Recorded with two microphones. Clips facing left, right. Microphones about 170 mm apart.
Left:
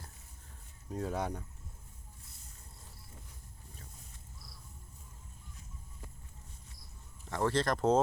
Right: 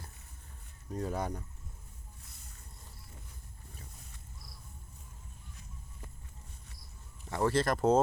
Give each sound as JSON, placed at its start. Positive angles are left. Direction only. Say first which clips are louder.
{"t": 0.9, "sound": "speech", "louder": "even", "side_deg": 5}
{"t": 2.2, "sound": "boat", "louder": "right 2 dB", "side_deg": -70}
{"t": 3.9, "sound": "a sound", "louder": "right 1 dB", "side_deg": -70}
{"t": 7.3, "sound": "speech", "louder": "right 2 dB", "side_deg": -10}